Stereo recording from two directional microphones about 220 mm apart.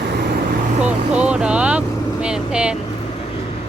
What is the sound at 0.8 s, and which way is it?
Speech, 5° right (ahead or behind).